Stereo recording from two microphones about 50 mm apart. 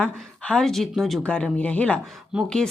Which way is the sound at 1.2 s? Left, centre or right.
Left.